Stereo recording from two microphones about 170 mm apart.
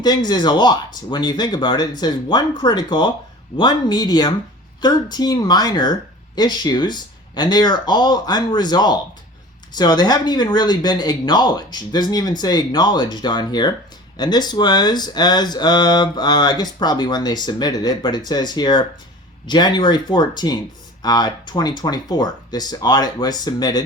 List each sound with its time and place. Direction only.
0.0 s speech: 25° left (ahead or behind)